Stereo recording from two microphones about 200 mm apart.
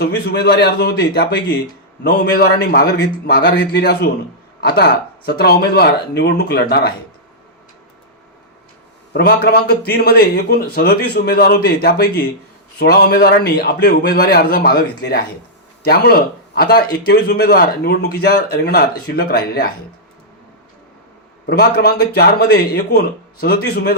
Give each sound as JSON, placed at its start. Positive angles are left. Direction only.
{"t": 0.0, "sound": "a man's voice", "side_deg": 55}
{"t": 9.1, "sound": "a man's voice", "side_deg": 50}
{"t": 21.6, "sound": "a man's voice", "side_deg": 55}